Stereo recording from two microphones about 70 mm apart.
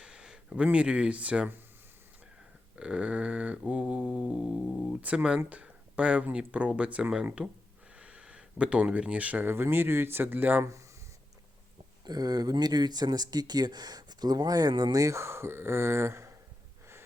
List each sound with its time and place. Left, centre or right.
0.0 s speech: centre
2.7 s mantra: centre
4.9 s speech: right
5.5 s a sound: centre
6.3 s speech: centre
10.6 s speech: right
12.0 s speech: right
14.9 s speech: right